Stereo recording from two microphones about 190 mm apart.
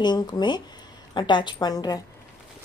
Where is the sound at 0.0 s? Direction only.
20° left (ahead or behind).